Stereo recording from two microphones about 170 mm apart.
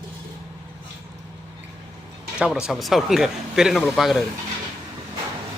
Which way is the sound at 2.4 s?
5° right (ahead or behind).